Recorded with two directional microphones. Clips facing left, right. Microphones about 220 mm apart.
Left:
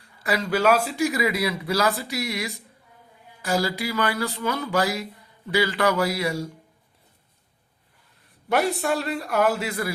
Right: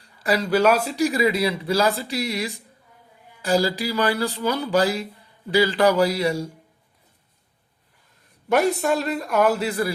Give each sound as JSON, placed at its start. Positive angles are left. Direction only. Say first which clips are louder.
{"t": 0.0, "sound": "a man's voice", "louder": "right 3 dB", "side_deg": -30}
{"t": 8.5, "sound": "a man's voice", "louder": "right 3 dB", "side_deg": -40}